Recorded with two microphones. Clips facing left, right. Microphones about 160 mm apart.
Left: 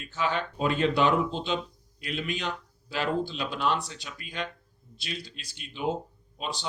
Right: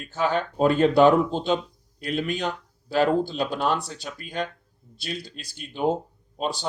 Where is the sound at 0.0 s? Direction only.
45° right (ahead or behind).